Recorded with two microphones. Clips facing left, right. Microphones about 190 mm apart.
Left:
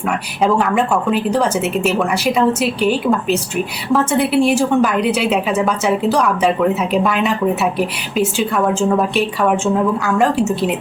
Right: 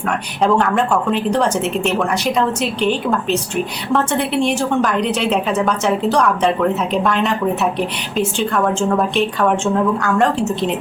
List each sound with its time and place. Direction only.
0.4 s a woman's voice: 5° left (ahead or behind)